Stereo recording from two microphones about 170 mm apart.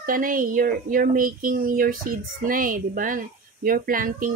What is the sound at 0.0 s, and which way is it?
Speech, 55° right (ahead or behind).